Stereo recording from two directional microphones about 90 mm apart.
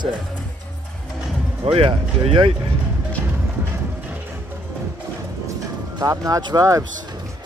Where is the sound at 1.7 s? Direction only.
85° right.